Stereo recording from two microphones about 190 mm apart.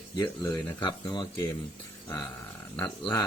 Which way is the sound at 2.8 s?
20° left (ahead or behind).